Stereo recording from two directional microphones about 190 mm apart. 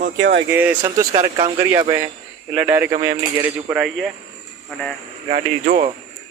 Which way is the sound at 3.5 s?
10° right (ahead or behind).